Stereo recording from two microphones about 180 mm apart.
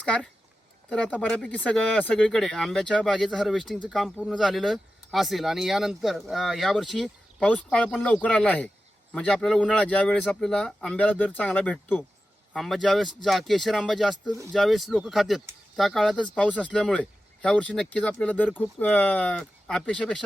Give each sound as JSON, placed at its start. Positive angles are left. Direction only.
{"t": 0.0, "sound": "a man's voice", "side_deg": 5}